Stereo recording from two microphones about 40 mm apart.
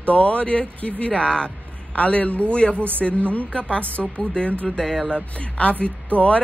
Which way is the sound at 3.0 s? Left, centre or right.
Centre.